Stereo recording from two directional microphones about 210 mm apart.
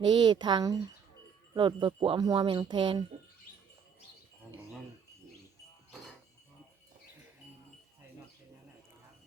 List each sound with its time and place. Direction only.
0.1 s speech: 20° right (ahead or behind)